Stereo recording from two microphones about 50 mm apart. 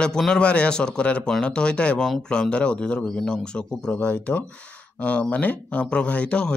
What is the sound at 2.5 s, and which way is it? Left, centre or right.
Speech, left.